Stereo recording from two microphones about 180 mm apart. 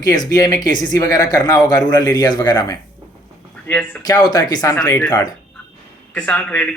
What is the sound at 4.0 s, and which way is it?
Speech, 20° left (ahead or behind).